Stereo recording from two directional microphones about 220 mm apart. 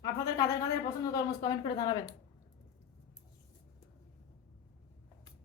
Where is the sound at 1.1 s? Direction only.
15° left (ahead or behind).